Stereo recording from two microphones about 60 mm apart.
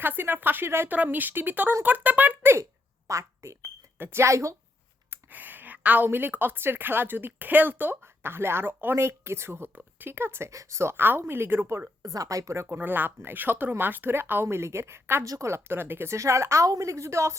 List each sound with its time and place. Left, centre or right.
0.0 s speech: right
0.9 s speech: right
3.1 s speech: right
3.9 s speech: right
5.3 s a sound: right
6.1 s speech: right
10.5 s a woman's voice: right
10.9 s speech: right
12.0 s speech: right
12.6 s speech: right
14.4 s speech: right
15.2 s speech: right
16.1 s a woman's voice: right